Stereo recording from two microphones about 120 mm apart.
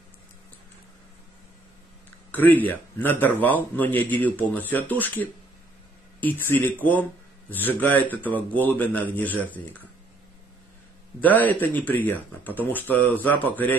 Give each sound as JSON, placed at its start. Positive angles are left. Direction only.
{"t": 2.3, "sound": "speech", "side_deg": 15}
{"t": 11.2, "sound": "speech", "side_deg": 15}